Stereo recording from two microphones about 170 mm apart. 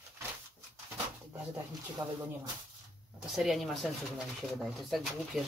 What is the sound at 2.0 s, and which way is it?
Speech, 20° right (ahead or behind).